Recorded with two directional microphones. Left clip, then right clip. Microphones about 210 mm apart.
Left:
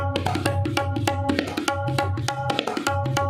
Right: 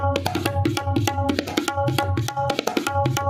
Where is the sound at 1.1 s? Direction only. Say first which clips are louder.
Even; 35° right (ahead or behind).